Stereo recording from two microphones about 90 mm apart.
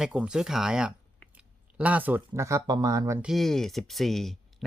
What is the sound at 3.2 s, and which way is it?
Speech, centre (ahead or behind).